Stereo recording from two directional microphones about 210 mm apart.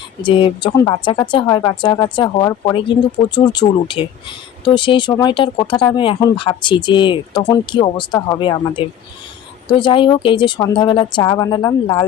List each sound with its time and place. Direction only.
0.3 s speech: 25° left (ahead or behind)